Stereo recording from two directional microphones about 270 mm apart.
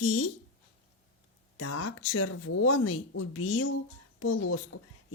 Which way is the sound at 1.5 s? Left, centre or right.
Left.